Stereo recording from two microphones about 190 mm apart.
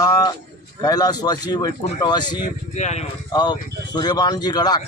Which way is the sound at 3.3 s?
20° left (ahead or behind).